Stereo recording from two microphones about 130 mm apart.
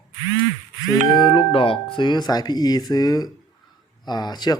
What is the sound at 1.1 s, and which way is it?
Speech, 35° left (ahead or behind).